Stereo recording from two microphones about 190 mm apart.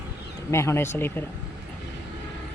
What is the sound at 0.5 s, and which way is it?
Speech, 15° left (ahead or behind).